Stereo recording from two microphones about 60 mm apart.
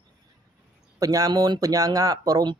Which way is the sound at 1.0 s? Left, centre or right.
Right.